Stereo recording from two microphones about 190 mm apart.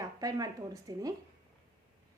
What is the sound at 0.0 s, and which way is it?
Speech, 20° right (ahead or behind).